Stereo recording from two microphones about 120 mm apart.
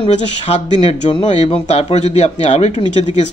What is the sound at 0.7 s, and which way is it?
A man's voice, 50° left (ahead or behind).